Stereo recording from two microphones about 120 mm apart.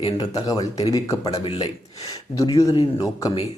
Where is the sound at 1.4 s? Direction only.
55° left (ahead or behind).